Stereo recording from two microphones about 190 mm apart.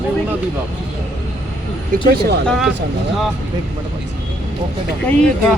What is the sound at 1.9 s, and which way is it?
Speech, 45° right (ahead or behind).